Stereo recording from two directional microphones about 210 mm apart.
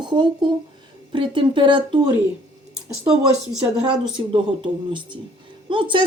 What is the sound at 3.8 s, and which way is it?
Speech, 20° right (ahead or behind).